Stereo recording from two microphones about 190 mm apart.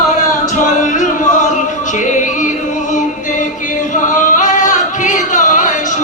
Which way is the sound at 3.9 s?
40° left (ahead or behind).